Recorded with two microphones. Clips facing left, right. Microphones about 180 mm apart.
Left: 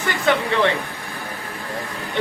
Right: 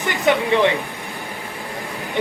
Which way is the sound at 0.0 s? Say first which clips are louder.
Right 2 dB; 15° right (ahead or behind).